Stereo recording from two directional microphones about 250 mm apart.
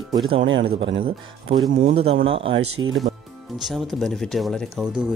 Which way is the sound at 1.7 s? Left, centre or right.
Right.